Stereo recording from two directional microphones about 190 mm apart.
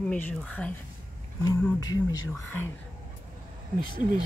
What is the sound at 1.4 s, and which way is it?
Speech, 20° left (ahead or behind).